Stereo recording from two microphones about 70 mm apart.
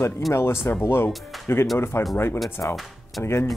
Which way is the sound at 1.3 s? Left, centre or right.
Centre.